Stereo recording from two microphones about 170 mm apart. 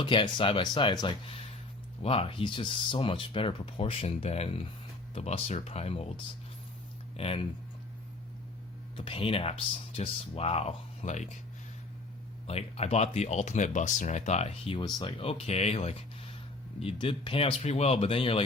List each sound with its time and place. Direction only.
0.0 s speech: 30° left (ahead or behind)
7.2 s speech: 35° left (ahead or behind)
9.0 s speech: 30° left (ahead or behind)
12.5 s speech: 35° left (ahead or behind)